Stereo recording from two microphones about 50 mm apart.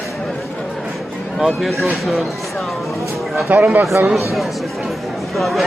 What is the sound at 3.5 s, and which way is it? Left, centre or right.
Speech, right.